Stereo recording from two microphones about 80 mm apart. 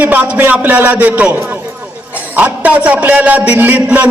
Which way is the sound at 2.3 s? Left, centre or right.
Right.